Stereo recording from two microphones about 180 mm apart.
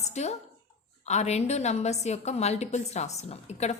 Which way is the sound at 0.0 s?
40° left (ahead or behind).